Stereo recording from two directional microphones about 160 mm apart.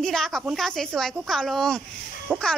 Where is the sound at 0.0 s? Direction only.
5° left (ahead or behind).